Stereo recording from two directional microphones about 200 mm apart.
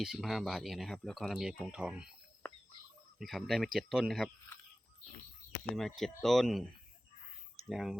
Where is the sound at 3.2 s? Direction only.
Centre (ahead or behind).